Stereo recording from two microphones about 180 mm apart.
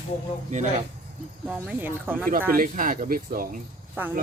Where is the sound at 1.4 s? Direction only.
10° right (ahead or behind).